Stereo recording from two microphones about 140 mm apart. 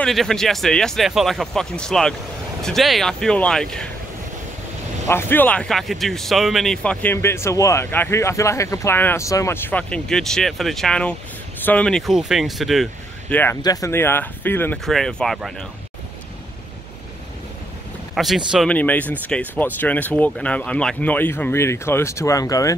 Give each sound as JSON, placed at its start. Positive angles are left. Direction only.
{"t": 0.0, "sound": "speech", "side_deg": 5}
{"t": 5.0, "sound": "speech", "side_deg": 15}
{"t": 13.3, "sound": "speech", "side_deg": 15}
{"t": 13.6, "sound": "speech", "side_deg": 25}
{"t": 18.1, "sound": "speech", "side_deg": 0}
{"t": 18.7, "sound": "speech", "side_deg": 10}